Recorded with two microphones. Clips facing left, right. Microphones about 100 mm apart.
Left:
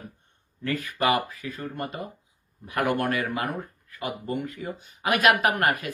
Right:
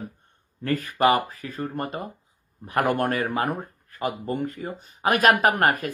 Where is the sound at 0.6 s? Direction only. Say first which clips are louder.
Right 5 dB; 40° right (ahead or behind).